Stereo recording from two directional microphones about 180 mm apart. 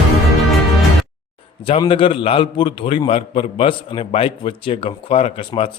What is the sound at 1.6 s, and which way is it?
A man's voice, 30° left (ahead or behind).